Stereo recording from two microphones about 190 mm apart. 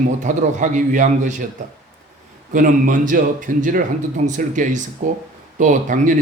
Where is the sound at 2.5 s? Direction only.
45° right (ahead or behind).